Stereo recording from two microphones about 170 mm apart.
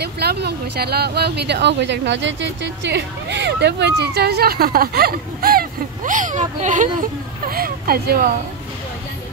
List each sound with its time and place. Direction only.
0.0 s speech: 70° right (ahead or behind)